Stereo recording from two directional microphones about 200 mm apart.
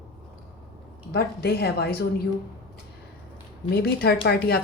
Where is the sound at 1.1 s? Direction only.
50° left (ahead or behind).